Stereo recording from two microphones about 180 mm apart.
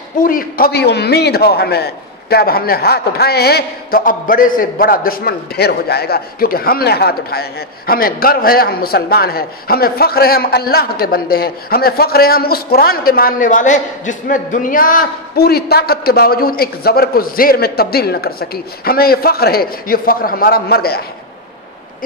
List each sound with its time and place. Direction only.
0.2 s a man's voice: 50° left (ahead or behind)